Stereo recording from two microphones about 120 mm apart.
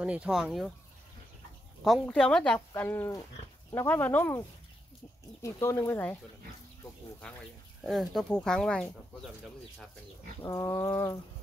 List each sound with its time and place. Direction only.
0.0 s speech: 10° right (ahead or behind)
2.0 s speech: 5° left (ahead or behind)
7.8 s speech: centre (ahead or behind)
10.5 s speech: 25° left (ahead or behind)